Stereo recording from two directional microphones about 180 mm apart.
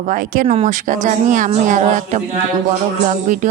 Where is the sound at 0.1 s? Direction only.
45° right (ahead or behind).